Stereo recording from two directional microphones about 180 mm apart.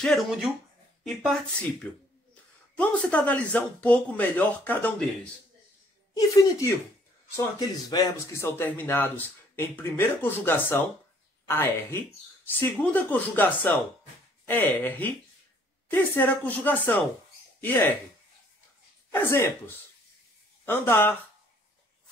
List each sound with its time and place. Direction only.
0.0 s speech: centre (ahead or behind)
6.1 s a woman's voice: 20° left (ahead or behind)
19.1 s speech: 10° left (ahead or behind)